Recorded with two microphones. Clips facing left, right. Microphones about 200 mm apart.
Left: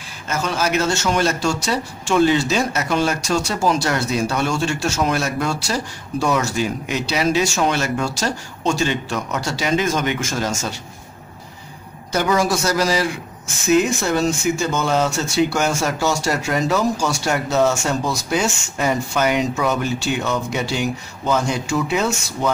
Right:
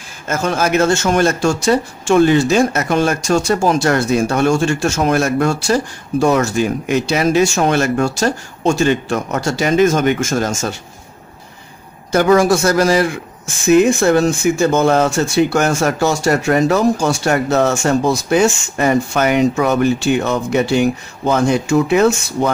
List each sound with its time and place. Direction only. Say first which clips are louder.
0.3 s speech: right 5 dB; 50° right (ahead or behind)
12.1 s speech: right 7 dB; 55° right (ahead or behind)